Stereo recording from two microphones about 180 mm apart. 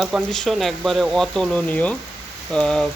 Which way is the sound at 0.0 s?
Centre (ahead or behind).